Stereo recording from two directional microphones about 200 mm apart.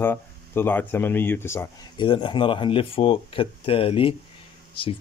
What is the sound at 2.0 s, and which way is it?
Speech, 25° left (ahead or behind).